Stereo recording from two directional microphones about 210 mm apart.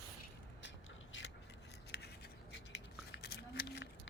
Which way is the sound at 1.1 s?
65° left (ahead or behind).